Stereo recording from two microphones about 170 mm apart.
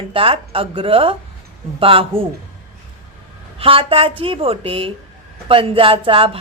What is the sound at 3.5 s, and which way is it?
Speech, 35° right (ahead or behind).